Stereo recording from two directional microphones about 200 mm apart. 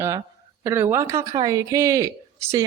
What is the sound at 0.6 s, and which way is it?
Speech, 10° right (ahead or behind).